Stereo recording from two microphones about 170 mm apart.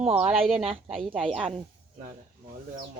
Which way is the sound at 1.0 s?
30° right (ahead or behind).